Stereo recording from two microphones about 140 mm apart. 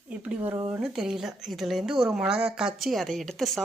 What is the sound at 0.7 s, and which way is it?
A woman's voice, 5° right (ahead or behind).